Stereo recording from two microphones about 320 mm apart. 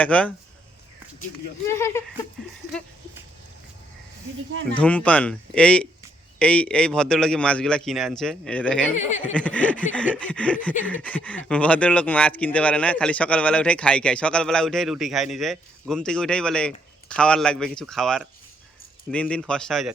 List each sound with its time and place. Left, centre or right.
0.0 s speech: centre
1.6 s speech: centre
4.8 s speech: centre
9.0 s speech: left
9.3 s speech: centre